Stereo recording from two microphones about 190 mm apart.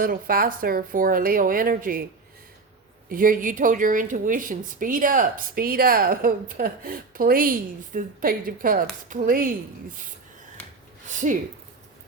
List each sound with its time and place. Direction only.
0.0 s a woman's voice: 50° right (ahead or behind)
3.1 s a woman's voice: 45° right (ahead or behind)
11.1 s a sound: 40° right (ahead or behind)